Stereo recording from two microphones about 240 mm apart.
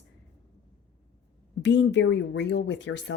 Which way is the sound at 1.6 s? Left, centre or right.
Left.